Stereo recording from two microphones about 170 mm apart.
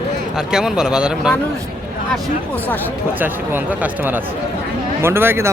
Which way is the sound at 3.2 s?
10° right (ahead or behind).